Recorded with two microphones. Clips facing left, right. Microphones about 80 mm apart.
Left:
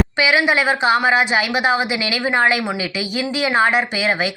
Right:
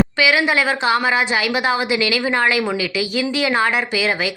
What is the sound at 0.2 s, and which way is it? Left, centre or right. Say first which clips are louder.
Speech: left 3 dB; left.